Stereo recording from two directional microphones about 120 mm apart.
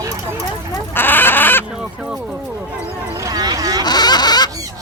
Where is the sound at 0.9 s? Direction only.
15° left (ahead or behind).